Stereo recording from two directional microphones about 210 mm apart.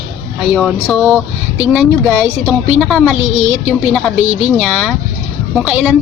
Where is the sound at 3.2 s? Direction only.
30° left (ahead or behind).